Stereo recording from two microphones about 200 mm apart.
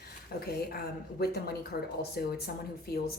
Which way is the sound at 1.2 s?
50° left (ahead or behind).